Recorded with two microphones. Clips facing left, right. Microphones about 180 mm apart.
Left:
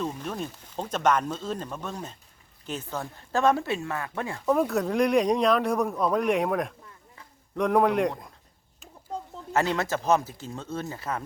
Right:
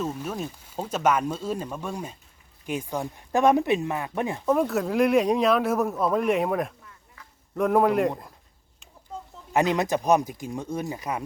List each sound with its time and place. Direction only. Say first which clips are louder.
0.0 s speech: right 2 dB; 5° right (ahead or behind)
4.4 s speech: even; centre (ahead or behind)
9.5 s speech: right 3 dB; 15° right (ahead or behind)